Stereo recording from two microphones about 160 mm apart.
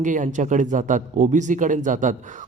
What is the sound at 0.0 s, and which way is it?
A man's voice, 55° right (ahead or behind).